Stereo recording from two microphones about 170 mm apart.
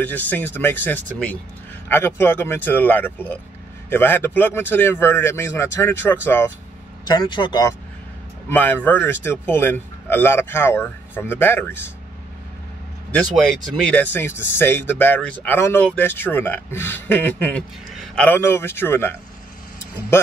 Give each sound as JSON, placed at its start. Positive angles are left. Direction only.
{"t": 0.0, "sound": "speech", "side_deg": 10}
{"t": 7.1, "sound": "speech", "side_deg": 25}
{"t": 8.5, "sound": "speech", "side_deg": 10}
{"t": 13.8, "sound": "a man's voice", "side_deg": 10}